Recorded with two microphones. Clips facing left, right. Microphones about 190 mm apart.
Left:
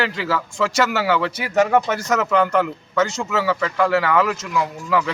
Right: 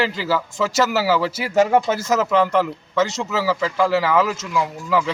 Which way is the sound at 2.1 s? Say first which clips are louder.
Even; centre (ahead or behind).